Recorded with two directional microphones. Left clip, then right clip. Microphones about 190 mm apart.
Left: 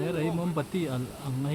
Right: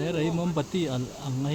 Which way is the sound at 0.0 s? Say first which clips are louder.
Right 2 dB; 20° right (ahead or behind).